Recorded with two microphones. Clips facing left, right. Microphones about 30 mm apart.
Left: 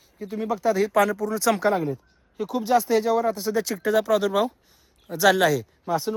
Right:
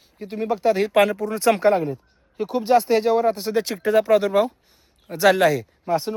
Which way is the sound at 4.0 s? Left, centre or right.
Right.